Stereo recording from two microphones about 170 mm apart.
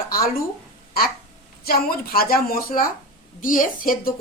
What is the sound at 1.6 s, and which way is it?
A woman's voice, 65° left (ahead or behind).